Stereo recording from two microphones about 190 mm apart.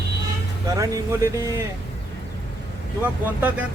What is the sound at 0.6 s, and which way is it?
Speech, 15° right (ahead or behind).